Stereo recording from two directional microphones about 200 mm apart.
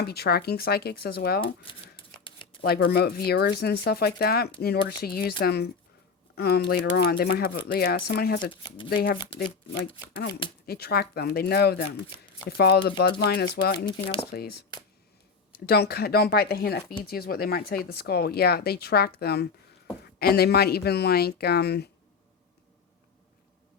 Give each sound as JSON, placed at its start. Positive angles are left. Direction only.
{"t": 0.0, "sound": "speech", "side_deg": 55}
{"t": 2.2, "sound": "shuffling cards", "side_deg": 25}
{"t": 2.6, "sound": "speech", "side_deg": 55}
{"t": 9.1, "sound": "speech", "side_deg": 25}
{"t": 9.7, "sound": "speech", "side_deg": 60}
{"t": 14.3, "sound": "speech", "side_deg": 50}
{"t": 15.6, "sound": "speech", "side_deg": 50}